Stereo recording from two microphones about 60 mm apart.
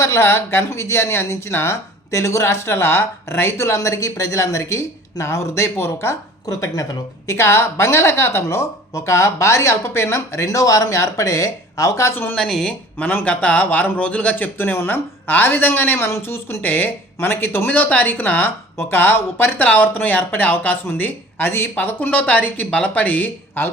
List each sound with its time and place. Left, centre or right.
0.0 s speech: left
3.8 s speech: left
6.4 s speech: left
7.3 s speech: left
12.1 s speech: left
12.4 s speech: centre
13.2 s speech: left
16.0 s speech: left
17.7 s speech: left